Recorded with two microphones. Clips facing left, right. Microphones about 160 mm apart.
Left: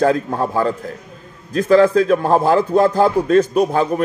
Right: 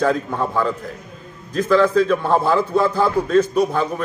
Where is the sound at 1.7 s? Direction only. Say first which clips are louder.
Left 3 dB; 45° left (ahead or behind).